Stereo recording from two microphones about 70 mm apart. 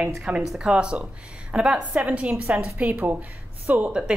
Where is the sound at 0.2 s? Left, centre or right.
Centre.